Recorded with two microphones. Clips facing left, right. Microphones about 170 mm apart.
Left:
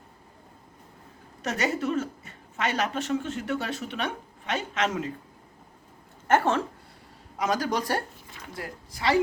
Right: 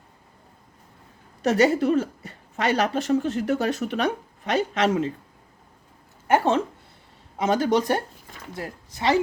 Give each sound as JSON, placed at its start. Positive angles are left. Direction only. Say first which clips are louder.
{"t": 1.4, "sound": "speech", "louder": "right 9 dB", "side_deg": -35}
{"t": 6.2, "sound": "speech", "louder": "right 2 dB", "side_deg": -15}
{"t": 7.3, "sound": "speech", "louder": "right 6 dB", "side_deg": -25}